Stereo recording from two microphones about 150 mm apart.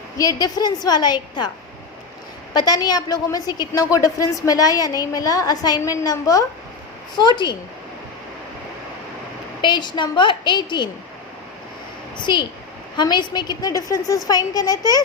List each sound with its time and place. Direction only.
0.2 s a woman's voice: 25° left (ahead or behind)
2.5 s a woman's voice: 25° left (ahead or behind)
9.6 s a woman's voice: 30° left (ahead or behind)
12.1 s a woman's voice: 30° left (ahead or behind)